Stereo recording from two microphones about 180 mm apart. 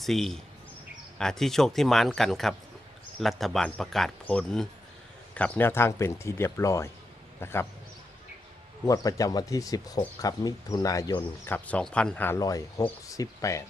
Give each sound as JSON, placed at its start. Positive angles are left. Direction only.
{"t": 0.0, "sound": "a man's voice", "side_deg": 0}
{"t": 8.9, "sound": "speech", "side_deg": 20}
{"t": 11.5, "sound": "speech", "side_deg": 5}